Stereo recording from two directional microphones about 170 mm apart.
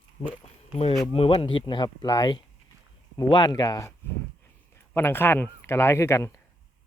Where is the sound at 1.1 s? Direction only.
35° left (ahead or behind); by 6.4 s 15° left (ahead or behind).